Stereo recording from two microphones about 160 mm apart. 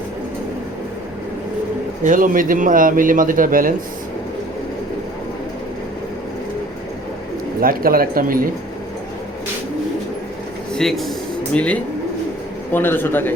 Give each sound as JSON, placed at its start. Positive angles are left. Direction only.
{"t": 2.0, "sound": "a man's voice", "side_deg": -60}
{"t": 7.6, "sound": "a man's voice", "side_deg": -65}
{"t": 10.8, "sound": "a man's voice", "side_deg": 0}